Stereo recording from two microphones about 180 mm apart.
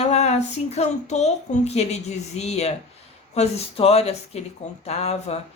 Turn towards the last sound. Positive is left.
turn(degrees=35)  # may be behind; listen again after turning